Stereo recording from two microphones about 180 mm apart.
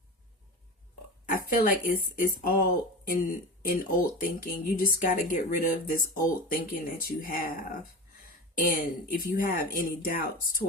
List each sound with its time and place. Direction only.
1.3 s speech: 50° left (ahead or behind)
8.6 s speech: 50° left (ahead or behind)